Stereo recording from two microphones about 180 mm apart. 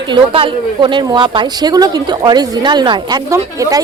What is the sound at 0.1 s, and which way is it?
A woman's voice, 30° right (ahead or behind).